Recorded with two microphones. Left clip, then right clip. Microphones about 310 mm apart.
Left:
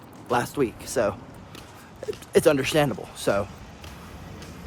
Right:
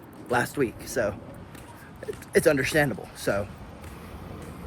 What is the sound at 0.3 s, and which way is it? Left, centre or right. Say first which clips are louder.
Speech: left 1 dB; centre.